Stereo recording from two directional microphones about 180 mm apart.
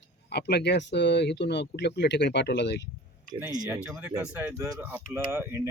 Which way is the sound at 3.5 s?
20° right (ahead or behind).